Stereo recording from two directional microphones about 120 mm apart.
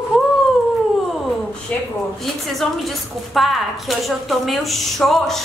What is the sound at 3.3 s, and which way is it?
A woman's voice, centre (ahead or behind).